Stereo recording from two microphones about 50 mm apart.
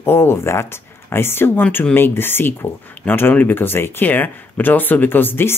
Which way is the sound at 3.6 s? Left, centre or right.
Left.